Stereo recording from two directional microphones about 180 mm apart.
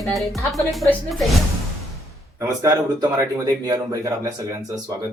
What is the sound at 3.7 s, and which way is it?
Speech, 20° right (ahead or behind).